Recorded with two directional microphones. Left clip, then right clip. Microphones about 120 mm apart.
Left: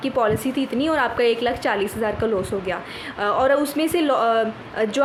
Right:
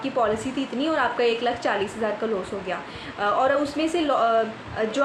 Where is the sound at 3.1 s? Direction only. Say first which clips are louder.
Left 2 dB; 60° left (ahead or behind).